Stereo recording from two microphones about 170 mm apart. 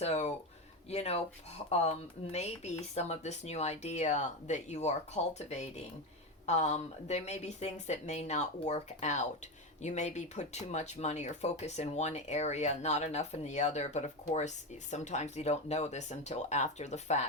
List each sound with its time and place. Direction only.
0.0 s speech: 40° left (ahead or behind)